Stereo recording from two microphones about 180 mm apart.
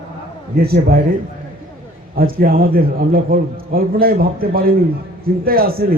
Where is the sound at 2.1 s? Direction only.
55° right (ahead or behind).